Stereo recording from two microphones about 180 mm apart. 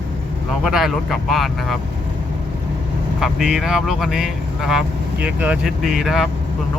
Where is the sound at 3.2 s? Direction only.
Centre (ahead or behind).